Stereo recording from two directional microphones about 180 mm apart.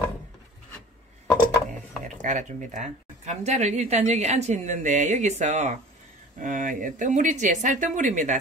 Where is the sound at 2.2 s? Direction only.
45° right (ahead or behind).